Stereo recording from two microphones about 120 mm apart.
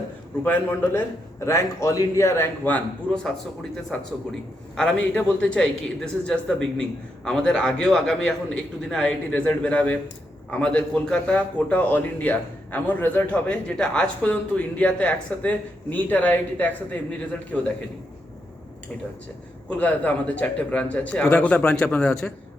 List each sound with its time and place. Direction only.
0.4 s a man's voice: 15° left (ahead or behind)
19.7 s a man's voice: 10° left (ahead or behind)